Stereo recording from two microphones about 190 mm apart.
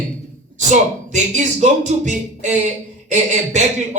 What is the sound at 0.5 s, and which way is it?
Speech, 40° right (ahead or behind).